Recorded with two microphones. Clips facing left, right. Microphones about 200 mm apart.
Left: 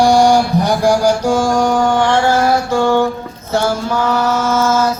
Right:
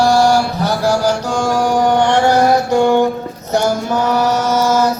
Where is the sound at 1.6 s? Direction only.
10° right (ahead or behind).